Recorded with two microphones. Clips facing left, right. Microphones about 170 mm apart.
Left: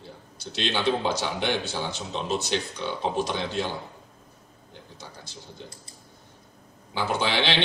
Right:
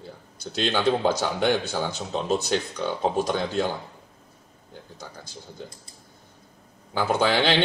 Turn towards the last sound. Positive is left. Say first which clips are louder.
# right 4 dB
turn(degrees=-45)  # may be behind; listen again after turning